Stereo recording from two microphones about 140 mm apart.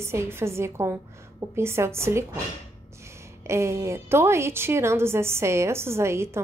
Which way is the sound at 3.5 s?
20° right (ahead or behind).